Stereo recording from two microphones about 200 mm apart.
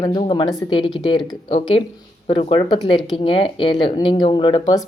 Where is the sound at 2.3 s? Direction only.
25° left (ahead or behind).